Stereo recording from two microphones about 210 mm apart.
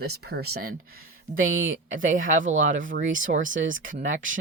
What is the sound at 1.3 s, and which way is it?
Speech, 70° right (ahead or behind).